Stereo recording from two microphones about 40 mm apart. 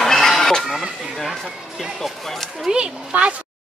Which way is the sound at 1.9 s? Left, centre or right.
Centre.